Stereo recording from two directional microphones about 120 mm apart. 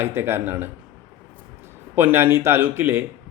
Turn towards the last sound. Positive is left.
turn(degrees=-15)  # may be behind; listen again after turning